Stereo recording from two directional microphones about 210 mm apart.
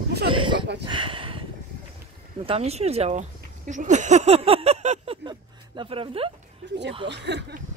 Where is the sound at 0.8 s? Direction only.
25° right (ahead or behind).